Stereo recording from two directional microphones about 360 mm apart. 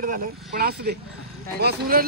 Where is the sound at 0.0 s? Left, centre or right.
Right.